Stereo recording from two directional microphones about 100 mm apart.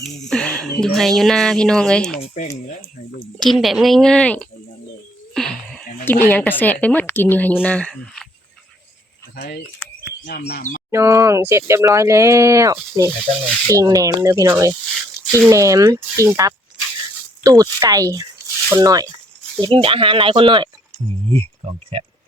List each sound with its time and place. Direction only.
0.0 s speech: 10° left (ahead or behind)
3.4 s speech: centre (ahead or behind)
5.3 s a sound: 5° left (ahead or behind)
6.1 s speech: 20° left (ahead or behind); by 8.3 s 5° left (ahead or behind)
10.9 s speech: 30° right (ahead or behind)
19.6 s speech: 60° right (ahead or behind)
21.2 s speech: 70° right (ahead or behind)